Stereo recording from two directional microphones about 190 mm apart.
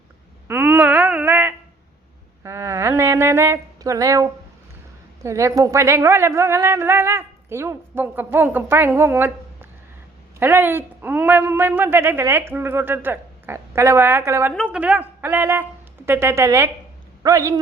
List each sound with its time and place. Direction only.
0.4 s a sound: 10° right (ahead or behind)
2.4 s a woman's voice: 15° right (ahead or behind)
14.5 s a woman's voice: centre (ahead or behind)